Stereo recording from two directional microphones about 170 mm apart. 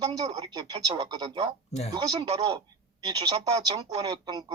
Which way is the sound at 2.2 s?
40° right (ahead or behind).